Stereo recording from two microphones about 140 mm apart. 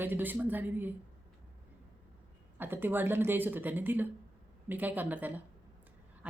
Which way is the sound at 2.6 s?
15° right (ahead or behind).